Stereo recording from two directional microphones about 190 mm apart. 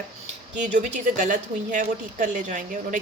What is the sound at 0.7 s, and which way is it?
A woman's voice, 40° right (ahead or behind).